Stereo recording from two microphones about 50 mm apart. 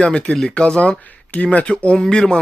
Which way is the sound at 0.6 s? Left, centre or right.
Left.